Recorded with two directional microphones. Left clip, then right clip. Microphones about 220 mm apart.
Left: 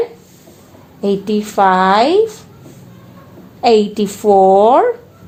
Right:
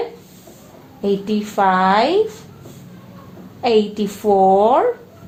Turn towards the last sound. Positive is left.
turn(degrees=45)  # may be behind; listen again after turning